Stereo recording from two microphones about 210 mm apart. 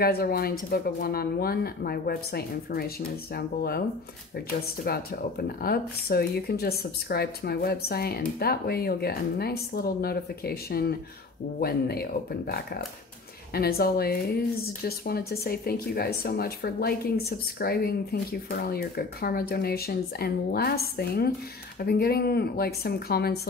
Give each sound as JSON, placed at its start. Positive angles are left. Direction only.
{"t": 0.0, "sound": "speech", "side_deg": 45}
{"t": 4.8, "sound": "speech", "side_deg": 45}